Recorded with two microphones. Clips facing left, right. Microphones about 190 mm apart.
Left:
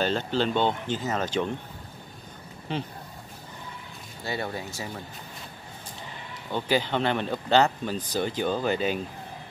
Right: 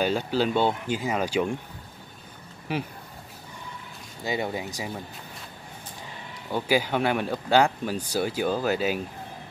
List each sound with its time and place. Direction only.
0.0 s speech: 10° right (ahead or behind)
2.7 s speech: 10° right (ahead or behind)
4.2 s speech: 15° right (ahead or behind)
6.5 s speech: 10° right (ahead or behind)